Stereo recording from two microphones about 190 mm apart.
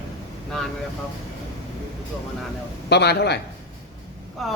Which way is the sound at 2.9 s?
60° left (ahead or behind).